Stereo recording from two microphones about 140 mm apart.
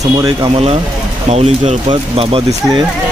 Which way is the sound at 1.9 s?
45° right (ahead or behind).